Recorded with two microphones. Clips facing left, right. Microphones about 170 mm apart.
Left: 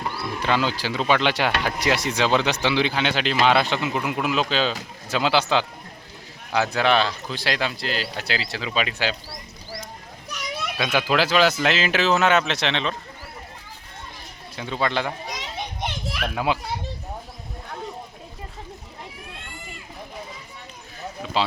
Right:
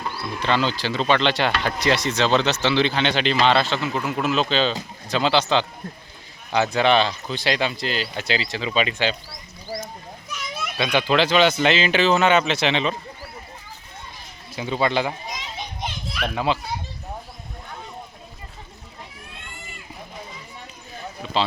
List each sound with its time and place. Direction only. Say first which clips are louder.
0.2 s speech: right 1 dB; 10° left (ahead or behind)
10.8 s speech: right 2 dB; 5° left (ahead or behind)
14.5 s speech: right 3 dB; 5° right (ahead or behind)
15.4 s children playing: left 1 dB; 70° left (ahead or behind)
16.2 s speech: right 1 dB; 10° left (ahead or behind)